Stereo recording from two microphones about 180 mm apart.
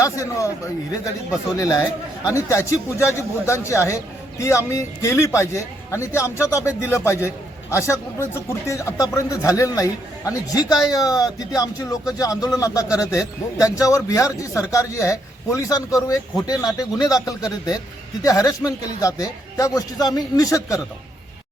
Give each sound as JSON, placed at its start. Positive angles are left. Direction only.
{"t": 0.0, "sound": "a man's voice", "side_deg": 15}
{"t": 1.5, "sound": "a man's voice", "side_deg": 20}